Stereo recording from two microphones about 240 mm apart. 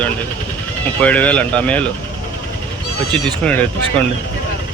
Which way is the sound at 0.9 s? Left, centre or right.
Centre.